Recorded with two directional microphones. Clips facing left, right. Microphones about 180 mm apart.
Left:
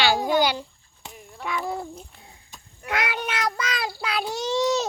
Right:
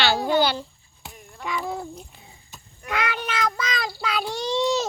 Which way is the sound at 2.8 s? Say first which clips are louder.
Even; 10° left (ahead or behind).